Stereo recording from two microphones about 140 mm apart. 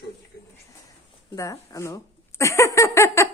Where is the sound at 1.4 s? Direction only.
25° left (ahead or behind).